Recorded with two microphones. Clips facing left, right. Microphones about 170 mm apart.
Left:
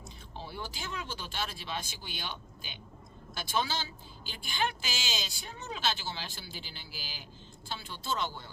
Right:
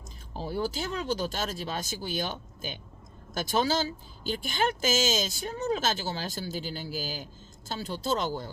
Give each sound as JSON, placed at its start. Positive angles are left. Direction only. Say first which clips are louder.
{"t": 0.3, "sound": "a woman's voice", "louder": "right 11 dB", "side_deg": -40}